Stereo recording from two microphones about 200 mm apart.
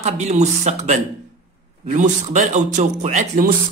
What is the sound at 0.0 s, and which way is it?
A man's voice, 35° right (ahead or behind).